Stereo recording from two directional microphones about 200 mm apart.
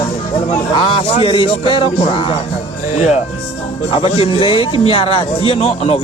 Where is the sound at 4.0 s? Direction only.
30° left (ahead or behind).